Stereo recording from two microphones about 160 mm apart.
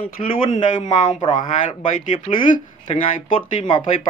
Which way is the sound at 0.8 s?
25° left (ahead or behind).